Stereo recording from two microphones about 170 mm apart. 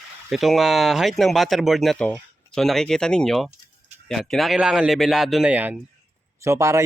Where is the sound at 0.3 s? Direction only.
Centre (ahead or behind).